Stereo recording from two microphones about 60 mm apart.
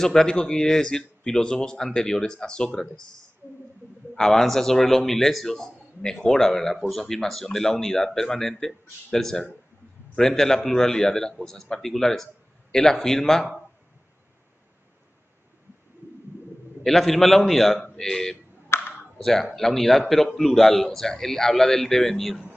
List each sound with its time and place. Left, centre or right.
0.0 s speech: centre
4.1 s speech: centre
16.8 s speech: centre
18.7 s a sound: left
19.1 s speech: centre